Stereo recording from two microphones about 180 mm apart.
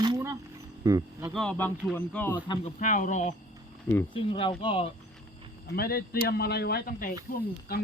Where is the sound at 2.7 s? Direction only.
45° left (ahead or behind).